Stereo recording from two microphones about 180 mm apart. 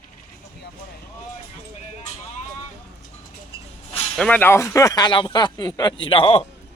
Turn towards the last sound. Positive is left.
turn(degrees=30)  # may be behind; listen again after turning